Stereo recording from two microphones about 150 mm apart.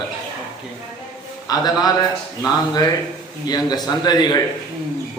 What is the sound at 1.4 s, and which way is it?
Speech, 25° left (ahead or behind).